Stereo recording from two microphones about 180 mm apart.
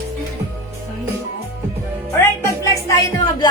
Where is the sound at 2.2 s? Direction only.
15° left (ahead or behind).